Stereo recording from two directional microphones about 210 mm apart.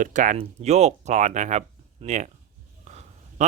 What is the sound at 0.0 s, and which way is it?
A man's voice, 40° right (ahead or behind).